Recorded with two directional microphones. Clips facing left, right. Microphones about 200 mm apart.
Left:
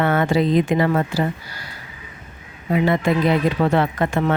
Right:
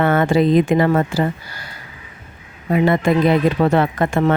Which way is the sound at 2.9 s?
50° right (ahead or behind).